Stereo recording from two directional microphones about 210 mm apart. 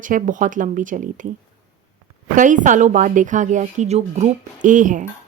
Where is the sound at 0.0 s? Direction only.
40° right (ahead or behind).